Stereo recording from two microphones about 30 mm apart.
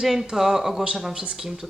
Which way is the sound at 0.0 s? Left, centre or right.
Centre.